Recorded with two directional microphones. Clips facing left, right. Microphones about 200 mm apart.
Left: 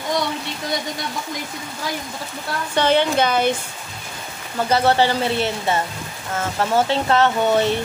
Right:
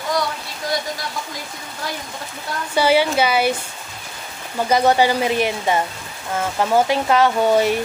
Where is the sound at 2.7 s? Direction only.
10° right (ahead or behind).